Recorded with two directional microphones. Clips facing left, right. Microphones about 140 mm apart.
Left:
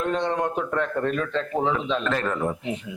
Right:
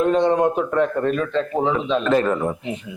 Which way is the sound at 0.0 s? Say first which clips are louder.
Right 8 dB; 10° right (ahead or behind).